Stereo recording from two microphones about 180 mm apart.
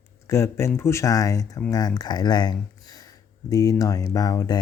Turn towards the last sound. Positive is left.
turn(degrees=20)  # may be behind; listen again after turning